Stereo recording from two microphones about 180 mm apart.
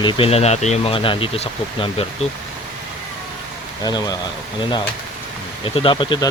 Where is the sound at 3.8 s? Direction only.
20° left (ahead or behind).